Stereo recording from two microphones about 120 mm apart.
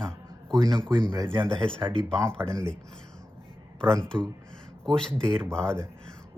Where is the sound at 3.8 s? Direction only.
5° left (ahead or behind).